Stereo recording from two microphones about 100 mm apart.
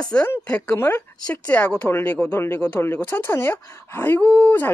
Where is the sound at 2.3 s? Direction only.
25° left (ahead or behind).